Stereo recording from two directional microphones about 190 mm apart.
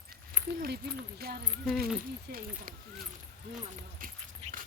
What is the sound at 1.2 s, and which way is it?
Speech, 55° right (ahead or behind).